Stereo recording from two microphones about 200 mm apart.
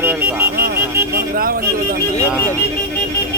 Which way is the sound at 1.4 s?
45° right (ahead or behind).